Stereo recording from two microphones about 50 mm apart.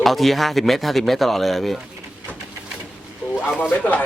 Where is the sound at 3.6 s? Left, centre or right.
Left.